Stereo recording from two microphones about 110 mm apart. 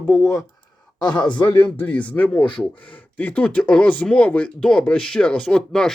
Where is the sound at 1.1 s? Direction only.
10° left (ahead or behind).